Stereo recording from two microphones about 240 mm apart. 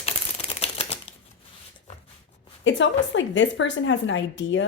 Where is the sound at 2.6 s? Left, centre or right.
Left.